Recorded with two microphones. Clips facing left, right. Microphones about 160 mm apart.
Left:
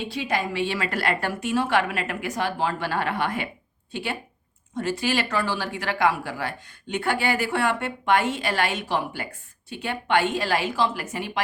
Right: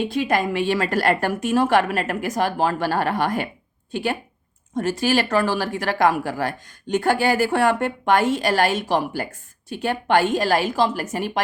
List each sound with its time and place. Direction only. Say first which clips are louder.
0.1 s a woman's voice: right 6 dB; 50° right (ahead or behind)